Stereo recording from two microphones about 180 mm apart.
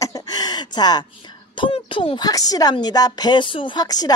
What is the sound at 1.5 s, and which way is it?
Speech, 25° left (ahead or behind).